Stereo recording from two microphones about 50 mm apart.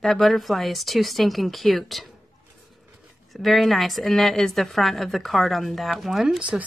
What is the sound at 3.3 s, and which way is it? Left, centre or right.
A woman's voice, centre.